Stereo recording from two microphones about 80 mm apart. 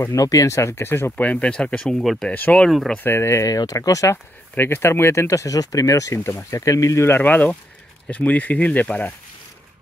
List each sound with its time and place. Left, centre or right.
0.1 s speech: left
1.1 s speech: centre
2.2 s speech: centre
2.7 s speech: centre
3.0 s speech: left
4.6 s speech: left
7.2 s speech: left